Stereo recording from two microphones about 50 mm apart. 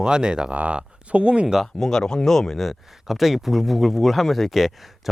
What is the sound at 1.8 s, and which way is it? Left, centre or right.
Speech, centre.